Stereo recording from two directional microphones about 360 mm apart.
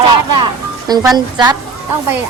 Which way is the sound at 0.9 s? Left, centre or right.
Centre.